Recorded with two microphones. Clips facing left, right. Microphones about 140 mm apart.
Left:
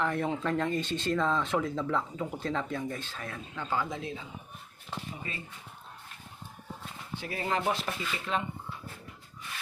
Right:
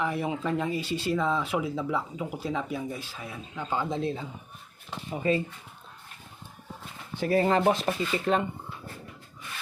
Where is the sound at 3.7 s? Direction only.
25° right (ahead or behind).